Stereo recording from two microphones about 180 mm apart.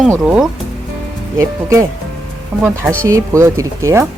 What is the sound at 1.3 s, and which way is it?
Speech, 15° right (ahead or behind).